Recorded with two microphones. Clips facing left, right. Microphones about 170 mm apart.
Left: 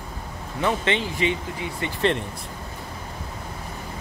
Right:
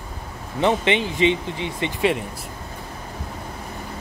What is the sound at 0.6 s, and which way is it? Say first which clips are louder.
Speech: right 4 dB; 20° right (ahead or behind).